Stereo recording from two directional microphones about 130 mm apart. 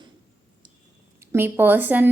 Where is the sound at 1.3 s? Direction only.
15° right (ahead or behind).